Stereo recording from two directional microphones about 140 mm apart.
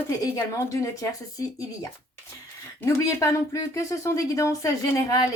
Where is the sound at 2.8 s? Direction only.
20° left (ahead or behind).